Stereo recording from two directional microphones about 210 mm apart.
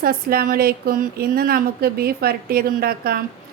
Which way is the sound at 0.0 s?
45° right (ahead or behind).